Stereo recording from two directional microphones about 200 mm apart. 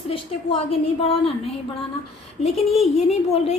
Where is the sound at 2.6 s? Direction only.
Centre (ahead or behind).